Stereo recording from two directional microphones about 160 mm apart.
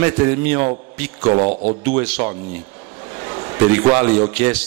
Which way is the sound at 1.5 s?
50° right (ahead or behind).